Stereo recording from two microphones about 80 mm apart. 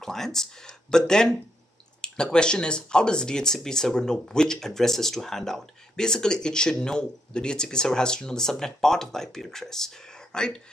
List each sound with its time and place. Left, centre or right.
0.0 s speech: centre